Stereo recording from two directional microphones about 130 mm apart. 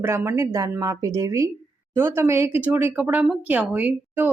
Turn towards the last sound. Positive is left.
turn(degrees=-15)  # may be behind; listen again after turning